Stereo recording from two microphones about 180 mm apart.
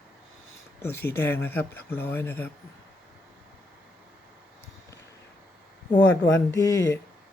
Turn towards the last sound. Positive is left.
turn(degrees=20)  # may be behind; listen again after turning